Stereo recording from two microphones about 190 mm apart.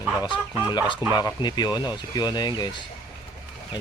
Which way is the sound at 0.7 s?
25° left (ahead or behind).